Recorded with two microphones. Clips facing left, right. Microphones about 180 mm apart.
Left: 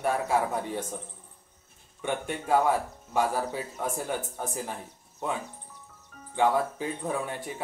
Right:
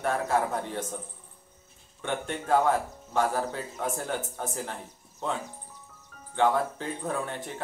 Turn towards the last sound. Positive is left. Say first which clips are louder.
# even
turn(degrees=10)  # may be behind; listen again after turning